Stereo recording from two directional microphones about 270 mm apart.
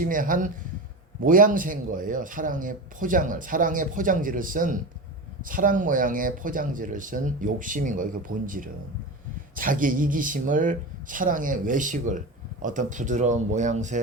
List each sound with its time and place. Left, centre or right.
0.0 s speech: right